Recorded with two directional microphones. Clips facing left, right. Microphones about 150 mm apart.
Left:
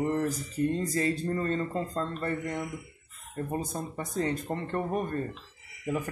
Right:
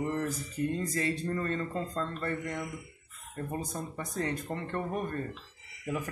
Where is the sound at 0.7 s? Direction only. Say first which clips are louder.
Left 3 dB; 35° left (ahead or behind).